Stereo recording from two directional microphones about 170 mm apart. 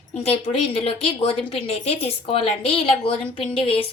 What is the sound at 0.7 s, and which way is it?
A woman's voice, 35° left (ahead or behind).